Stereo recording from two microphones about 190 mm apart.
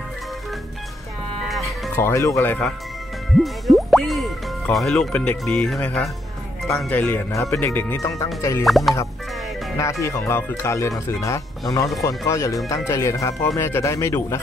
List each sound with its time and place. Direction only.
2.0 s speech: 15° left (ahead or behind)
3.3 s speech: centre (ahead or behind); by 8.6 s 15° left (ahead or behind)
8.6 s speech: centre (ahead or behind)
9.8 s speech: 15° left (ahead or behind)